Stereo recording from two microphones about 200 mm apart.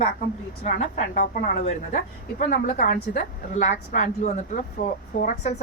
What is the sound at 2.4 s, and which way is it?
A woman's voice, 45° left (ahead or behind).